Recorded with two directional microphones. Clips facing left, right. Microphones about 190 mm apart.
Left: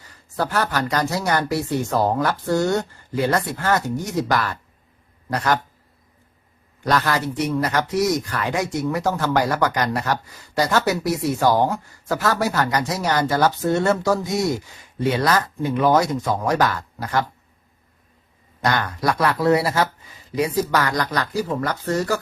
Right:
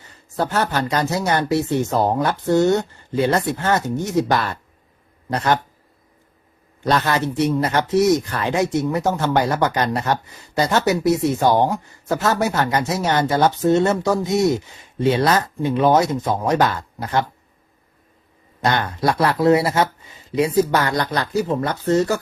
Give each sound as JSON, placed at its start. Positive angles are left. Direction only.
{"t": 0.0, "sound": "speech", "side_deg": -25}
{"t": 6.8, "sound": "speech", "side_deg": -25}
{"t": 18.6, "sound": "speech", "side_deg": -25}